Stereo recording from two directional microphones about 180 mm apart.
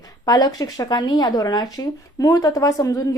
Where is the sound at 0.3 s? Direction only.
20° left (ahead or behind).